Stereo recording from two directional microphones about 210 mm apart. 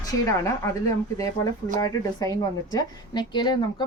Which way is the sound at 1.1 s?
15° left (ahead or behind).